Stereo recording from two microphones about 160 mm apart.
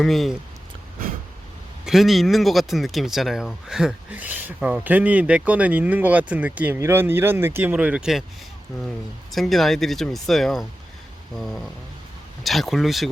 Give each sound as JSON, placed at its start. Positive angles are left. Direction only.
{"t": 0.0, "sound": "speech", "side_deg": 0}
{"t": 1.8, "sound": "speech", "side_deg": 0}
{"t": 9.3, "sound": "speech", "side_deg": 0}